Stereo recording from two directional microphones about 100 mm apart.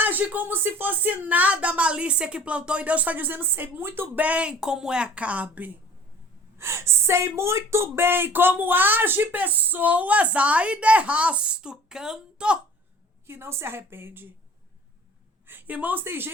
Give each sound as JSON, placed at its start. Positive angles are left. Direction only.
{"t": 0.0, "sound": "speech", "side_deg": -20}
{"t": 6.6, "sound": "speech", "side_deg": -25}
{"t": 13.2, "sound": "a woman's voice", "side_deg": -25}
{"t": 15.4, "sound": "speech", "side_deg": -20}